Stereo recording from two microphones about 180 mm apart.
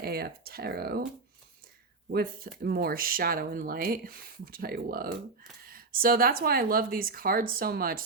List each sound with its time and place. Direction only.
0.0 s speech: 60° right (ahead or behind)
2.0 s speech: 55° right (ahead or behind)